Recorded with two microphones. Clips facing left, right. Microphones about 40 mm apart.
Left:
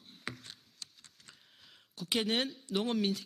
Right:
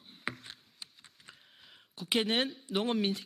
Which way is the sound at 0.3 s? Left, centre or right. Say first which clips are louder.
Right 4 dB; right.